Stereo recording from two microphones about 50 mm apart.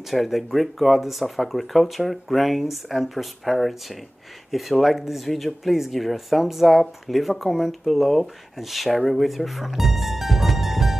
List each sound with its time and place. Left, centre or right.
0.1 s speech: centre